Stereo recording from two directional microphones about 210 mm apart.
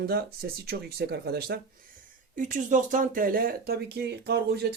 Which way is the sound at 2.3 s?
40° right (ahead or behind).